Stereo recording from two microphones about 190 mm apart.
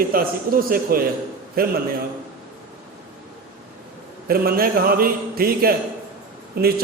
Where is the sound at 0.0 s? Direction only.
50° right (ahead or behind).